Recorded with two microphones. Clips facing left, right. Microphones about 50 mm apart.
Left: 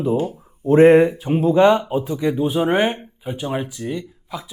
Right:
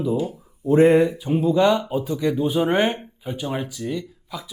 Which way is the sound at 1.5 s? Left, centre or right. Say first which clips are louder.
Left 5 dB; left.